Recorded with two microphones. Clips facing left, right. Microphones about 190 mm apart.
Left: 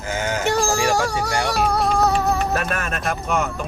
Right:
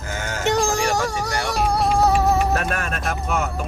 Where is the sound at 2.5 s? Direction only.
Centre (ahead or behind).